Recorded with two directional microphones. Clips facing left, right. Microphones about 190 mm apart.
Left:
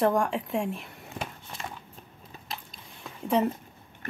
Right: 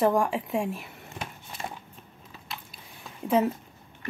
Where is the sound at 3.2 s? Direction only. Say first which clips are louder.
Right 1 dB; 5° right (ahead or behind).